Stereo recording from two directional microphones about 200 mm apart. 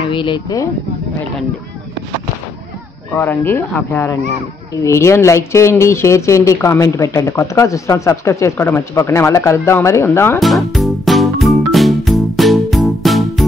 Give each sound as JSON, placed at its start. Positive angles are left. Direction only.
{"t": 0.1, "sound": "speech", "side_deg": 25}
{"t": 3.2, "sound": "speech", "side_deg": 10}
{"t": 10.4, "sound": "music", "side_deg": 0}